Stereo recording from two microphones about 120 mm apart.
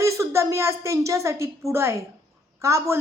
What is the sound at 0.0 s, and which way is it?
A woman's voice, 25° right (ahead or behind).